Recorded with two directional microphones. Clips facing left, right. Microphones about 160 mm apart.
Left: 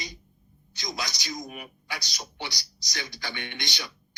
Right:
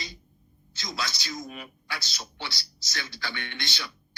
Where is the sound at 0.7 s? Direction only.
20° left (ahead or behind).